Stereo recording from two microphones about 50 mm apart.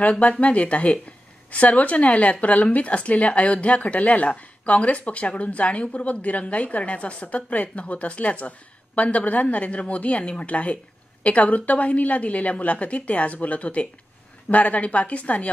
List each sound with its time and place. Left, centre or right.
0.2 s a woman's voice: left